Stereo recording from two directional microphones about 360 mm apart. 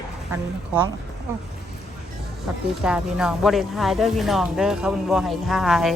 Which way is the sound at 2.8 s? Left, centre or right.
Centre.